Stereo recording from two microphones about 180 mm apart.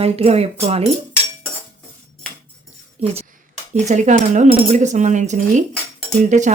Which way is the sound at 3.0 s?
35° right (ahead or behind).